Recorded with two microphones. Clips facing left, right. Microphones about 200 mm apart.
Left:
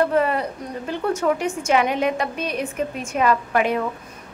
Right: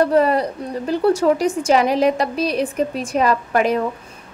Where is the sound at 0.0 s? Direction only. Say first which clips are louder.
Right 4 dB; 35° right (ahead or behind).